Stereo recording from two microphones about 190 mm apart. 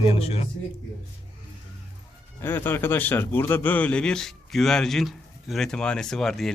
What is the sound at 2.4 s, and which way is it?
A man's voice, 10° left (ahead or behind).